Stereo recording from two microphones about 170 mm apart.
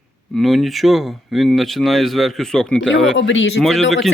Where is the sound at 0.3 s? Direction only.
Centre (ahead or behind).